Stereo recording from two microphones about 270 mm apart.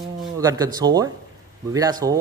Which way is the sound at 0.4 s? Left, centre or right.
Centre.